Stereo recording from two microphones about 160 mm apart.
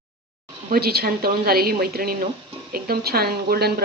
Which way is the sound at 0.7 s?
75° right (ahead or behind).